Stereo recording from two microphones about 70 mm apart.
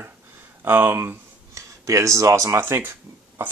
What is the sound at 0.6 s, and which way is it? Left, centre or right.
Speech, right.